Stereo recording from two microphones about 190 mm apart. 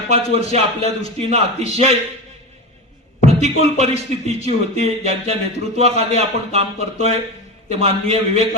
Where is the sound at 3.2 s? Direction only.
35° right (ahead or behind).